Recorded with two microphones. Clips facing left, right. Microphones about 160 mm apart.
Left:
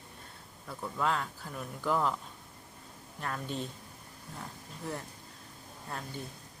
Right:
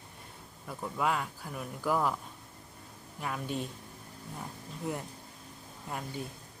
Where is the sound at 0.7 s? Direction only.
10° right (ahead or behind).